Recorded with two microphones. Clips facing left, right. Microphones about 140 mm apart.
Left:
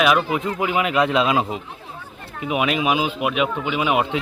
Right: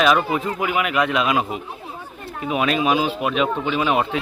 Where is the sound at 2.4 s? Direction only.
15° left (ahead or behind).